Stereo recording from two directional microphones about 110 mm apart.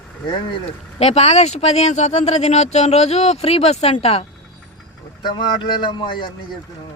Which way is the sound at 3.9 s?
60° left (ahead or behind).